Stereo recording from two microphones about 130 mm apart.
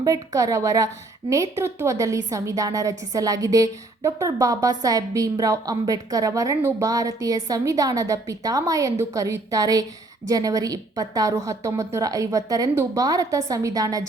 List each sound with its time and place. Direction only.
0.0 s a woman's voice: 25° right (ahead or behind)